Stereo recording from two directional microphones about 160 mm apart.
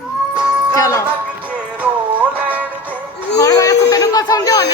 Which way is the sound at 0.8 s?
20° left (ahead or behind).